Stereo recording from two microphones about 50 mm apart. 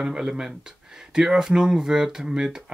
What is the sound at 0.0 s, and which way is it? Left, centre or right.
Speech, centre.